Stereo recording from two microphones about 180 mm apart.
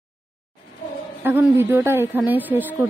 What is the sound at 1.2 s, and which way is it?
A woman's voice, 10° right (ahead or behind).